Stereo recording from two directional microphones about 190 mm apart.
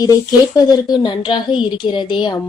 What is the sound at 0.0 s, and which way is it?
Speech, 20° left (ahead or behind).